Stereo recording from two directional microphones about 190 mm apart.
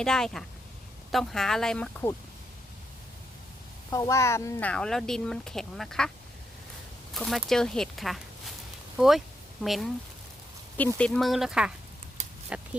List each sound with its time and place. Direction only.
0.0 s speech: 5° left (ahead or behind)
3.8 s speech: 15° left (ahead or behind); by 6.1 s centre (ahead or behind)
7.1 s speech: centre (ahead or behind)